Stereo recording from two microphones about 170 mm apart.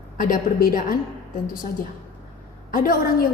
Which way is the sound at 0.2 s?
55° left (ahead or behind).